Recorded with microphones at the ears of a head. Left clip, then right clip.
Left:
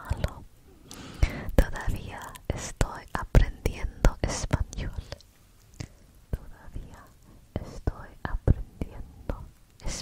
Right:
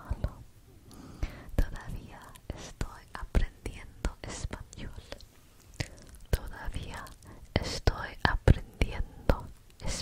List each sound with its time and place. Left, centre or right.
0.0 s whispering: left
6.5 s whispering: right